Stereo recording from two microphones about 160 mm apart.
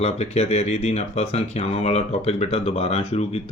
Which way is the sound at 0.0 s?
40° left (ahead or behind).